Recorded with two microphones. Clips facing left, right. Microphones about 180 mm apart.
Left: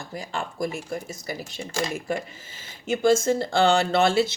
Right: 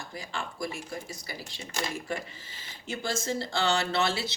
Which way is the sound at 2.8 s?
50° left (ahead or behind).